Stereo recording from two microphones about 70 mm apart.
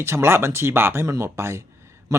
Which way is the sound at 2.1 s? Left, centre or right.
Right.